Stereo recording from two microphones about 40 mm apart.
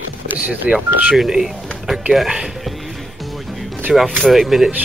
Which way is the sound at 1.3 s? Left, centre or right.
Centre.